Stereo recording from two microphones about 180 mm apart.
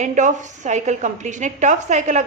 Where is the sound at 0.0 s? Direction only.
45° right (ahead or behind).